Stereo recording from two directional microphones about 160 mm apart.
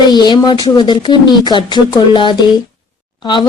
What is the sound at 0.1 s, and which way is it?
Speech, 25° left (ahead or behind).